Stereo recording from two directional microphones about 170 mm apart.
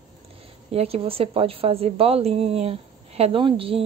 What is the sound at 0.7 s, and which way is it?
A woman's voice, 35° right (ahead or behind).